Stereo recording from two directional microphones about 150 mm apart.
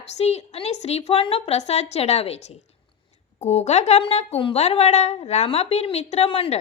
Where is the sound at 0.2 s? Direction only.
45° left (ahead or behind).